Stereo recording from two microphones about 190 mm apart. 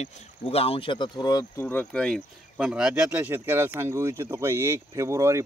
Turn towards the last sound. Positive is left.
turn(degrees=-15)  # may be behind; listen again after turning